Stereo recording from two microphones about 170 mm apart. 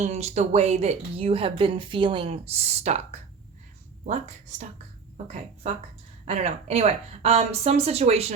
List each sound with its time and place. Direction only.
0.0 s speech: 40° right (ahead or behind)